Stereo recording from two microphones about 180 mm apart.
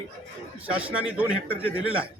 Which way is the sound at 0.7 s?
5° right (ahead or behind).